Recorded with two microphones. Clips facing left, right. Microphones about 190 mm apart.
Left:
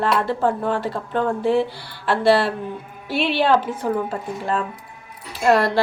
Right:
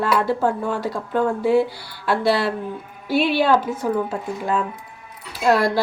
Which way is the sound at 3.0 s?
45° right (ahead or behind).